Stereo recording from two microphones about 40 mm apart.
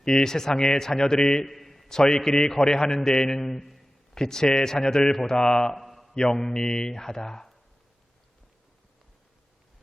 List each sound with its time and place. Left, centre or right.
0.0 s a man's voice: centre
1.5 s a sound: centre
2.0 s a man's voice: centre
4.1 s a man's voice: centre
5.7 s a sound: centre
6.1 s a man's voice: centre